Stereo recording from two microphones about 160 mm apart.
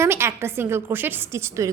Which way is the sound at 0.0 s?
15° right (ahead or behind).